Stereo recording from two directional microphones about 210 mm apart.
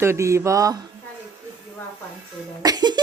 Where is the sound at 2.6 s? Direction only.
20° right (ahead or behind).